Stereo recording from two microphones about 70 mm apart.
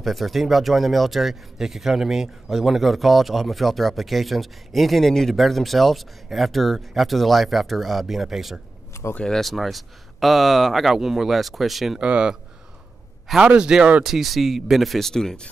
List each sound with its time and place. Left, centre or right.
0.0 s speech: centre
9.1 s speech: centre
9.4 s speech: centre
12.0 s speech: centre
13.5 s speech: centre
14.0 s speech: centre